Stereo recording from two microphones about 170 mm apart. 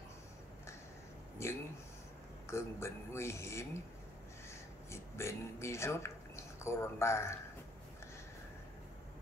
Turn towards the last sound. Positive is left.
turn(degrees=15)  # may be behind; listen again after turning